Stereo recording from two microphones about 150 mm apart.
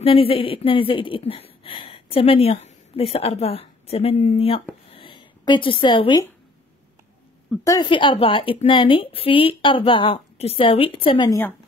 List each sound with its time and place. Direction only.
0.0 s a woman's voice: 40° left (ahead or behind)
4.9 s a sound: 35° left (ahead or behind)
7.6 s a woman's voice: 20° left (ahead or behind)
7.9 s a woman's voice: 35° left (ahead or behind)
11.2 s a woman's voice: 20° left (ahead or behind)